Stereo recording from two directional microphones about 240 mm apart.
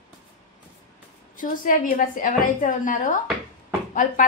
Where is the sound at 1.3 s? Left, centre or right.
Left.